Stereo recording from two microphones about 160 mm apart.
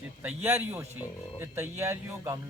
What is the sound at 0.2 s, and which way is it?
Speech, 10° right (ahead or behind).